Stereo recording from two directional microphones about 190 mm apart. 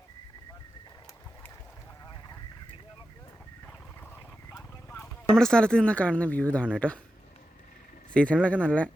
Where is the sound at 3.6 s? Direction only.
10° left (ahead or behind).